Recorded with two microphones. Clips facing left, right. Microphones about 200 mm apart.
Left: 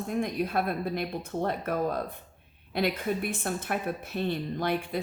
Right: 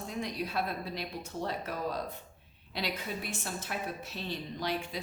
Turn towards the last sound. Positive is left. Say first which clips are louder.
# left 6 dB
turn(degrees=55)  # may be behind; listen again after turning